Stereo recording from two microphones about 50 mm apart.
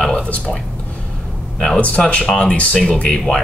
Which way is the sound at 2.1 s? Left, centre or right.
Centre.